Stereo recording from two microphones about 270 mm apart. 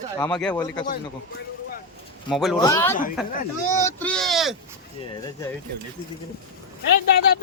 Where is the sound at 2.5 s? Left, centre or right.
Centre.